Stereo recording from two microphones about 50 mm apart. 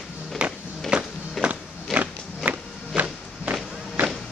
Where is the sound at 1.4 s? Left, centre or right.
Centre.